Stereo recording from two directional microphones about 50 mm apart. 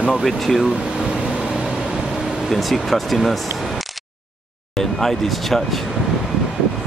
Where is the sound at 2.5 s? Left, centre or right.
Centre.